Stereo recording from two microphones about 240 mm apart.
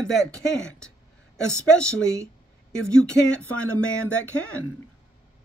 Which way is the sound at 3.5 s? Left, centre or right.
Left.